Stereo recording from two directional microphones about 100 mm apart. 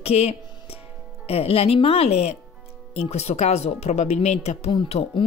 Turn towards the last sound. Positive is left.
turn(degrees=90)